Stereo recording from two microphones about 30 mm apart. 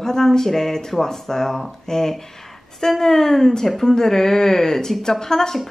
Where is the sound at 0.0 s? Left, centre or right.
Centre.